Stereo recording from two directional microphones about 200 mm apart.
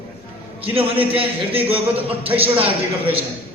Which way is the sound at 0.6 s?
30° right (ahead or behind).